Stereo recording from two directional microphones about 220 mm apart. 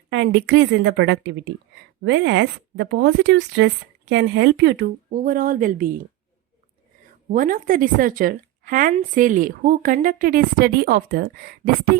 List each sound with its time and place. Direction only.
0.1 s speech: 50° right (ahead or behind)
7.3 s speech: 35° right (ahead or behind)